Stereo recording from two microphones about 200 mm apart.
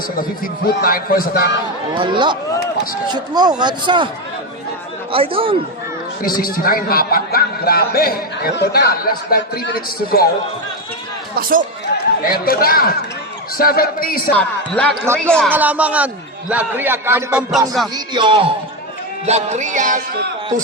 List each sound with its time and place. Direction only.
0.8 s speech: 45° left (ahead or behind)
2.0 s a man's voice: 25° right (ahead or behind)
5.1 s a man's voice: 25° right (ahead or behind)
6.2 s speech: 45° left (ahead or behind)
11.3 s speech: 45° right (ahead or behind)
12.2 s speech: 45° left (ahead or behind)
14.3 s speech: 5° left (ahead or behind)
15.0 s a man's voice: 10° right (ahead or behind)
15.3 s speech: 5° left (ahead or behind)
15.5 s a man's voice: 10° right (ahead or behind)
17.9 s a man's voice: 25° right (ahead or behind)
19.2 s music: 35° right (ahead or behind)